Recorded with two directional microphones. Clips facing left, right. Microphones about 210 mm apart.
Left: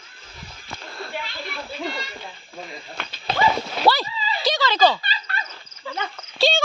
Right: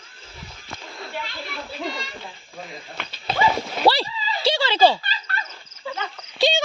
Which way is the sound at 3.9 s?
30° right (ahead or behind).